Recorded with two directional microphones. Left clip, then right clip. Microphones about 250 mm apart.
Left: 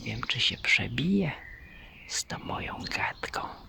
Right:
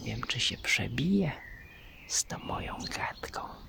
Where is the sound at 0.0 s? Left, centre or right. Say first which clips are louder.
Left 4 dB; centre.